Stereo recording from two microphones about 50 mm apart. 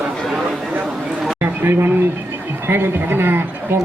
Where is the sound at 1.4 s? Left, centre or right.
Right.